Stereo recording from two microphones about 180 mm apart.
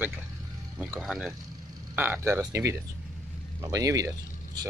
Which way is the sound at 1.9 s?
10° right (ahead or behind).